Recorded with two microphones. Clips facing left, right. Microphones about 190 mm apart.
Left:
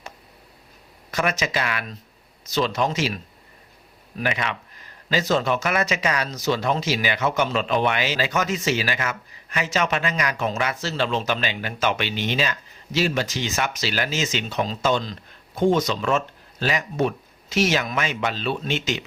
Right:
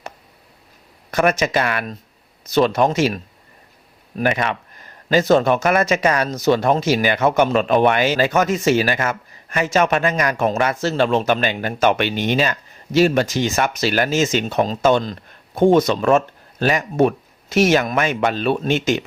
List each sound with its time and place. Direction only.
1.1 s speech: 55° right (ahead or behind)
4.2 s speech: 50° right (ahead or behind)